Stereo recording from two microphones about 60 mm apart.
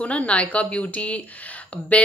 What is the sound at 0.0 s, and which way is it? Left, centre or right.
Speech, left.